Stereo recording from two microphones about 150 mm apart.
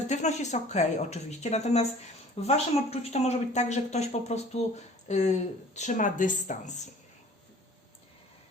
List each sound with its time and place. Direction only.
0.1 s speech: 50° left (ahead or behind)